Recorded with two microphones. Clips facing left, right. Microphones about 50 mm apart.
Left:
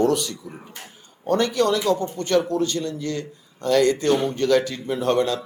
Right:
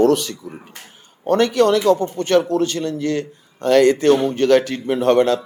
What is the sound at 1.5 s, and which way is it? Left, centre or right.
A man's voice, right.